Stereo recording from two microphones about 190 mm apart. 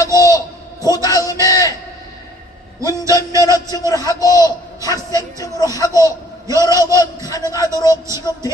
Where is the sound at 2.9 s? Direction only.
20° left (ahead or behind).